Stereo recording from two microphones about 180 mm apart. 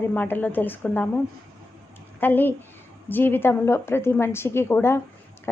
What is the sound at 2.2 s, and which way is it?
A woman's voice, 10° left (ahead or behind).